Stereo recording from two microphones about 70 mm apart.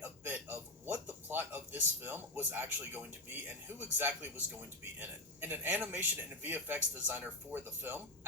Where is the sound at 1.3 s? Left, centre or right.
Right.